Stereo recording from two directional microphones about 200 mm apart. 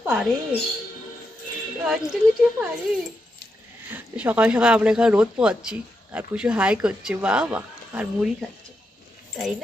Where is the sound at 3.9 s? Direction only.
10° right (ahead or behind).